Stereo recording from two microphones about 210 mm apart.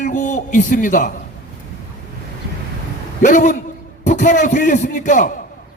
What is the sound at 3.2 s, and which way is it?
A man's voice, 35° left (ahead or behind).